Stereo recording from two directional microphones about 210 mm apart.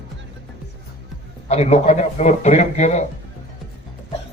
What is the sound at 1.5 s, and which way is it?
A man's voice, 30° left (ahead or behind).